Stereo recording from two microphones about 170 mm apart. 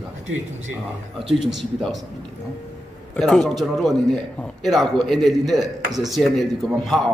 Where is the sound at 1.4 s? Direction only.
Centre (ahead or behind).